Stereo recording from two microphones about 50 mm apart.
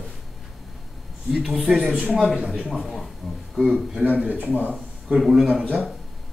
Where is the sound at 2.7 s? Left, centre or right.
Centre.